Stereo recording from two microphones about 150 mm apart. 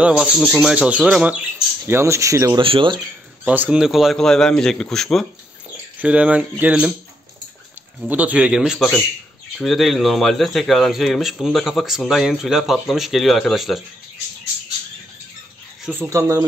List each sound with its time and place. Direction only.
0.0 s speech: 5° right (ahead or behind)
2.6 s speech: 35° right (ahead or behind)
3.4 s speech: 10° right (ahead or behind)
5.9 s speech: 10° right (ahead or behind)
8.0 s speech: 10° right (ahead or behind)
15.8 s speech: 15° right (ahead or behind)